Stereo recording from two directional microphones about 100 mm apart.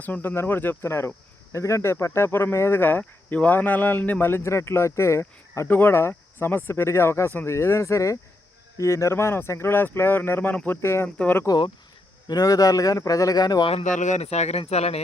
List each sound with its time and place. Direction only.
0.0 s speech: 20° left (ahead or behind)
10.8 s speech: 30° left (ahead or behind)
11.2 s speech: 15° left (ahead or behind)
11.4 s speech: 50° left (ahead or behind)
12.3 s speech: 40° left (ahead or behind)
13.7 s speech: 90° left